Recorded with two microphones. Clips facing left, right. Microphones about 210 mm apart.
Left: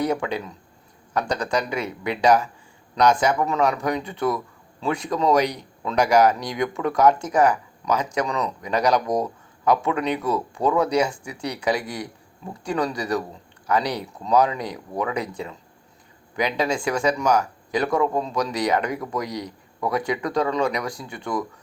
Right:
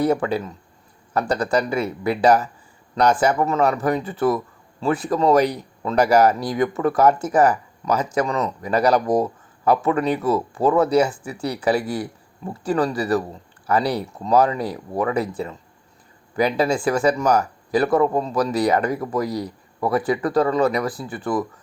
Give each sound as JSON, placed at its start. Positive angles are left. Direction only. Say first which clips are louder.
{"t": 0.0, "sound": "speech", "louder": "right 4 dB", "side_deg": -5}